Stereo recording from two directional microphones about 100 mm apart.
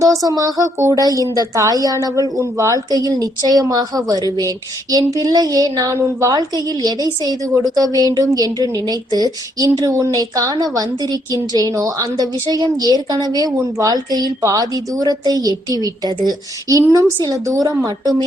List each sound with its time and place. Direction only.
0.0 s a woman's voice: 35° right (ahead or behind)